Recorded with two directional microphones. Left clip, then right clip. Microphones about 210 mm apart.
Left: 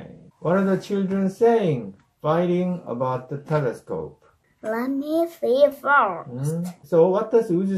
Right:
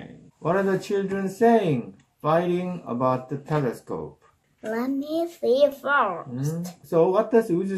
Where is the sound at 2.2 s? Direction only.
35° right (ahead or behind).